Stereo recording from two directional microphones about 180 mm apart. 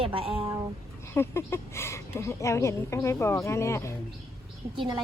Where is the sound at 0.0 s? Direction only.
30° right (ahead or behind).